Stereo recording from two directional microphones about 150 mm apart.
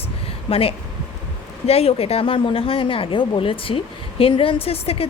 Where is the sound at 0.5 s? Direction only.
35° left (ahead or behind).